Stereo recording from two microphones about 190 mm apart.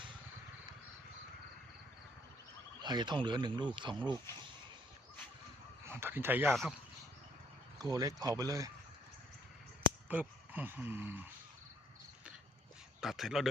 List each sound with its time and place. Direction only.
2.8 s speech: 25° right (ahead or behind)
5.8 s speech: 10° right (ahead or behind)
7.8 s speech: 20° right (ahead or behind)
10.1 s speech: 10° right (ahead or behind)
13.0 s speech: centre (ahead or behind)